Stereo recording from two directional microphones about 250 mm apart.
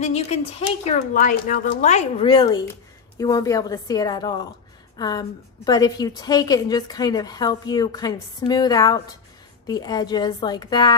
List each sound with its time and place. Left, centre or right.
0.0 s a woman's voice: left